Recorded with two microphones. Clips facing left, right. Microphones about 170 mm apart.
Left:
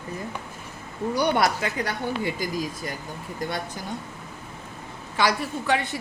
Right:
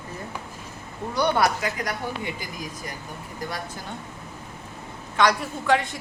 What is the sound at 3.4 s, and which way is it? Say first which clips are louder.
Speech: left 3 dB; 25° left (ahead or behind).